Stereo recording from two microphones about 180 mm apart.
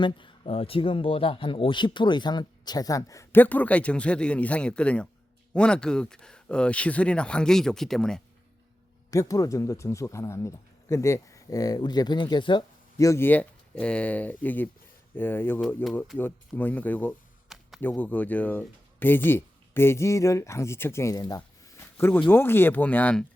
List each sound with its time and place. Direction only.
0.0 s a man's voice: 30° left (ahead or behind); by 8.2 s 5° left (ahead or behind)
9.0 s speech: 20° left (ahead or behind)